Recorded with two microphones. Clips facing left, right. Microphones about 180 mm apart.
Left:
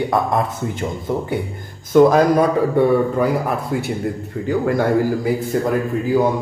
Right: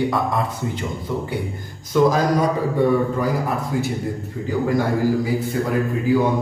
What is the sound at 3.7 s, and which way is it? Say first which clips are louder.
Speech: even; 60° left (ahead or behind).